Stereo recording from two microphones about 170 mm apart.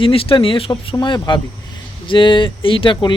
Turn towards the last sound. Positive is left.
turn(degrees=30)  # may be behind; listen again after turning